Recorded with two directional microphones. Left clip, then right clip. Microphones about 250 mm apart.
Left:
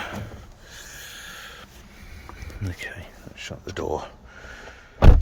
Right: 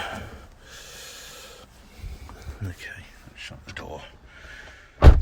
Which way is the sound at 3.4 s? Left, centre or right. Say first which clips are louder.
Left 6 dB; left.